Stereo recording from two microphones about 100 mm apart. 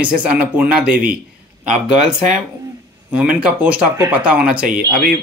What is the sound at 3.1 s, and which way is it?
Speech, 10° right (ahead or behind).